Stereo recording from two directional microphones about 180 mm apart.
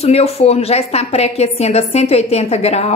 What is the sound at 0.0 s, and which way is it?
A woman's voice, 35° left (ahead or behind).